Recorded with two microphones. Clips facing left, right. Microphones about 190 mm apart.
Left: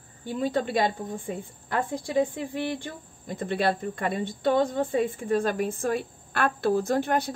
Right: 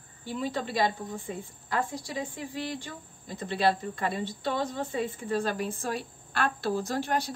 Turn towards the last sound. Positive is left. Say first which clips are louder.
# left 5 dB
turn(degrees=55)  # may be behind; listen again after turning